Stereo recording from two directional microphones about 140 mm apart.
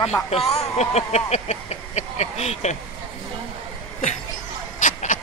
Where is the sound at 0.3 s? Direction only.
45° left (ahead or behind).